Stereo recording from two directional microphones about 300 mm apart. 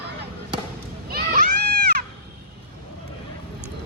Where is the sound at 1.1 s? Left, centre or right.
Right.